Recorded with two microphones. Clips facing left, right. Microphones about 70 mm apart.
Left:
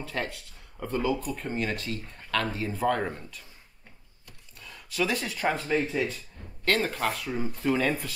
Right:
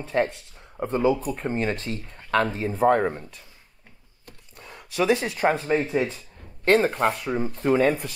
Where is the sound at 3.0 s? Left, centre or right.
Right.